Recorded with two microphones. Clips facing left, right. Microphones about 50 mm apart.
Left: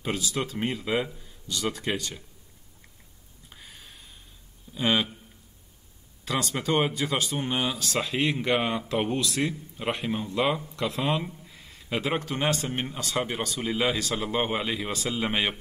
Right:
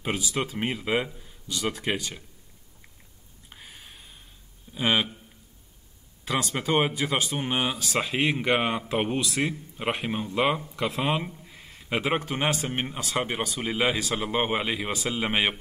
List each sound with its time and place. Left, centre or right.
0.0 s speech: centre
3.4 s a sound: centre
4.7 s speech: centre
6.2 s speech: centre